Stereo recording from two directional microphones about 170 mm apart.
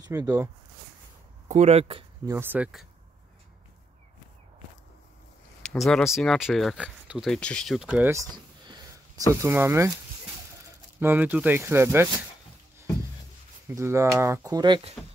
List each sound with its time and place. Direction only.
0.1 s speech: 20° right (ahead or behind)
1.5 s speech: 40° right (ahead or behind)
2.2 s speech: 15° right (ahead or behind)
5.6 s speech: 5° left (ahead or behind)
8.1 s speech: 20° right (ahead or behind)
11.0 s speech: 10° right (ahead or behind)
13.7 s speech: 15° right (ahead or behind)